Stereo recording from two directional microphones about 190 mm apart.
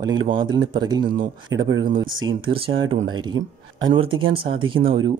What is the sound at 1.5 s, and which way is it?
Speech, 80° right.